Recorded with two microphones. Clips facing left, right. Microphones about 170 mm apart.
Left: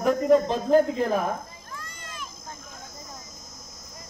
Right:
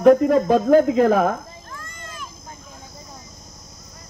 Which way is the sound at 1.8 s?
50° right (ahead or behind).